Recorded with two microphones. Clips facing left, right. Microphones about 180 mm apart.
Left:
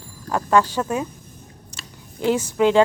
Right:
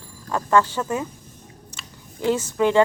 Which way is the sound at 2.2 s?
15° left (ahead or behind).